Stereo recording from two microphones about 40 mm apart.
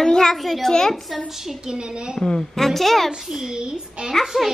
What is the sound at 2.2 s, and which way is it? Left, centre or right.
Speech, centre.